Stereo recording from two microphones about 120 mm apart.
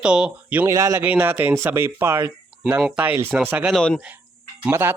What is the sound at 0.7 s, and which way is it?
Speech, 25° right (ahead or behind).